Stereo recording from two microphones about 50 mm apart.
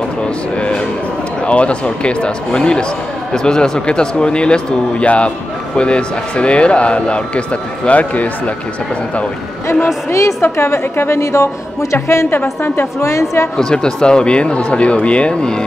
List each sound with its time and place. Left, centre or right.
0.6 s speech: left
10.4 s a woman's voice: left
12.4 s a woman's voice: left
13.0 s a woman's voice: left
13.6 s speech: centre